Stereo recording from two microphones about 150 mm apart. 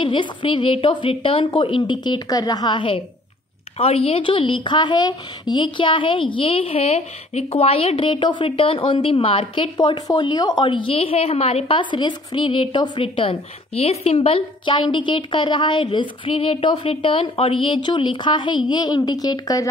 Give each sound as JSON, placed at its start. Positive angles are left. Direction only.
{"t": 0.0, "sound": "a woman's voice", "side_deg": 35}